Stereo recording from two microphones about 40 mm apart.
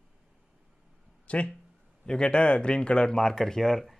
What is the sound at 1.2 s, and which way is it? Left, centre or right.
Speech, left.